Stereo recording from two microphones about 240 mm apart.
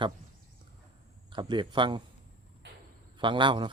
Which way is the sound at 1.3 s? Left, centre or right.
Centre.